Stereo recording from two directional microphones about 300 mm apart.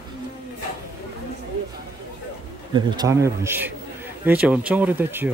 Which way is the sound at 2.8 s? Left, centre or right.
Centre.